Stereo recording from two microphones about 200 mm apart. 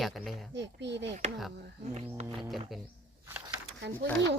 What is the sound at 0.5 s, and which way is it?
Speech, 60° right (ahead or behind).